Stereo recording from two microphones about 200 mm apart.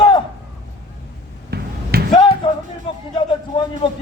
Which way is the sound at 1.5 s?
50° right (ahead or behind).